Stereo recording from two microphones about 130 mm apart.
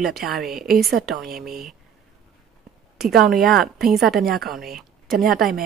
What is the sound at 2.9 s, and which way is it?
A woman's voice, centre (ahead or behind).